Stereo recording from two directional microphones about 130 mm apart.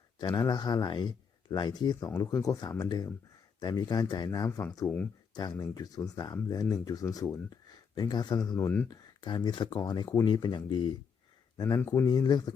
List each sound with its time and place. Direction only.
0.2 s speech: 30° left (ahead or behind)
8.5 s speech: 15° left (ahead or behind)
8.9 s speech: 35° left (ahead or behind)
11.5 s speech: 25° left (ahead or behind)
12.0 s speech: 35° left (ahead or behind)